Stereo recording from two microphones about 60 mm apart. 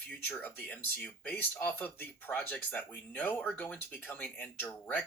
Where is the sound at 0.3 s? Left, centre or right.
Left.